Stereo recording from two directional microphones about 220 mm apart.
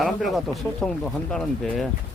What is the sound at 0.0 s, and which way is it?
Speech, centre (ahead or behind).